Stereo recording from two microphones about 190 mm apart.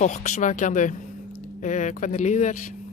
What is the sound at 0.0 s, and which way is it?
Speech, 40° left (ahead or behind).